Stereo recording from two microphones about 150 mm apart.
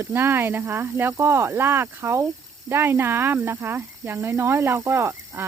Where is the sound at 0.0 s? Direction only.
15° right (ahead or behind).